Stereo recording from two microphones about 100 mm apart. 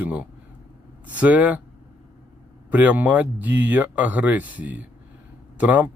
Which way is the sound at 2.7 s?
15° right (ahead or behind).